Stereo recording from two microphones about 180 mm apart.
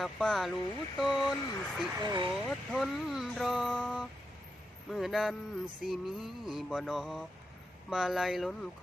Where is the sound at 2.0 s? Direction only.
25° right (ahead or behind).